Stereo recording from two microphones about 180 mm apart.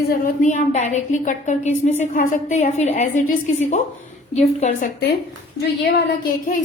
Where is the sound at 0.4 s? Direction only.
40° left (ahead or behind).